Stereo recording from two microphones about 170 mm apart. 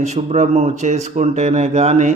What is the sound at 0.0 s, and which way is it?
A man's voice, 40° right (ahead or behind).